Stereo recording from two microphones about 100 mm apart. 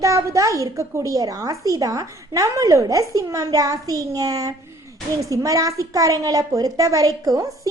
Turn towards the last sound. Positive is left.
turn(degrees=-35)  # may be behind; listen again after turning